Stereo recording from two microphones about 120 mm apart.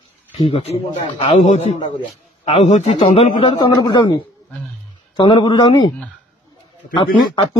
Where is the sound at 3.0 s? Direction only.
50° left (ahead or behind).